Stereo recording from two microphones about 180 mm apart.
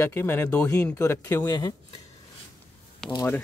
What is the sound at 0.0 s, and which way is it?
Speech, 15° left (ahead or behind).